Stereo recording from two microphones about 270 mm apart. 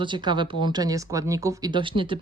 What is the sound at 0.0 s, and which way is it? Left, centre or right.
Speech, centre.